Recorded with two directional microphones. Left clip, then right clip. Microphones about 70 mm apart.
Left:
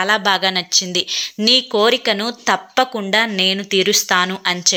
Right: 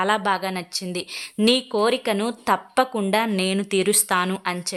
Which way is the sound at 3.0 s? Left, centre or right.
Centre.